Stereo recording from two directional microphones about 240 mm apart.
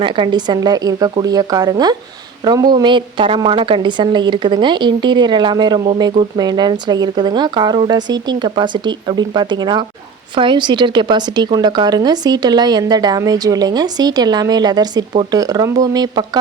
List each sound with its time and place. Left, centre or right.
0.0 s a woman's voice: centre